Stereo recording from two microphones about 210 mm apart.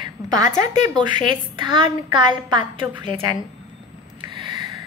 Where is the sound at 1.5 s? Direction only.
25° right (ahead or behind).